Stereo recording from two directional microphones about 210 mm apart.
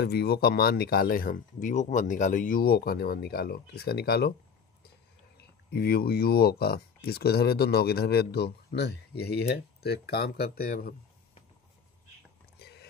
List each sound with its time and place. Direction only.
0.0 s speech: 50° left (ahead or behind)
5.4 s speech: 50° left (ahead or behind)
12.5 s a sound: 50° left (ahead or behind)